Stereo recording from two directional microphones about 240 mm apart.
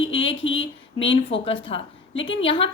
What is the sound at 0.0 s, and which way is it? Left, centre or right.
Speech, left.